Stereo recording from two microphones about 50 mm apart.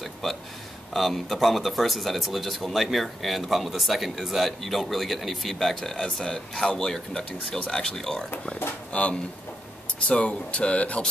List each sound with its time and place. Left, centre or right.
0.0 s a sound: centre
0.9 s speech: centre
8.9 s speech: left